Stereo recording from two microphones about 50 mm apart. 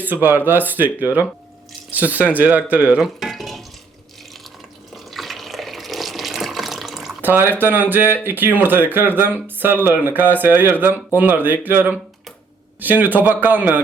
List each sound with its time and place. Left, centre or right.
0.0 s speech: right
3.0 s stir: centre
5.1 s water: centre
7.2 s speech: right